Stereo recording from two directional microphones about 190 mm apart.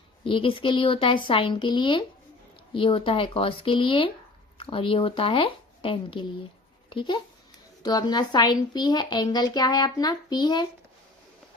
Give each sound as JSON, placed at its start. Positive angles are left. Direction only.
{"t": 0.3, "sound": "a woman's voice", "side_deg": 25}